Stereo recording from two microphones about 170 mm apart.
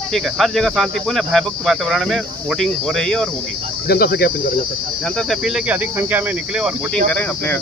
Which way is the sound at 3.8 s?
65° left (ahead or behind).